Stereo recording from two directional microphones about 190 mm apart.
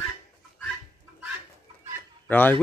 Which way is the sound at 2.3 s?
10° left (ahead or behind).